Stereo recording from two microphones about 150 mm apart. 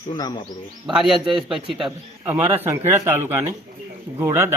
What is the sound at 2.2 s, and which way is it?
A man's voice, 15° right (ahead or behind).